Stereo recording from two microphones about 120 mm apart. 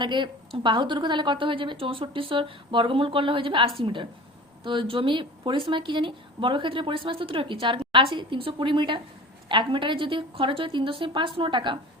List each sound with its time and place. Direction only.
0.0 s a woman's voice: 40° right (ahead or behind)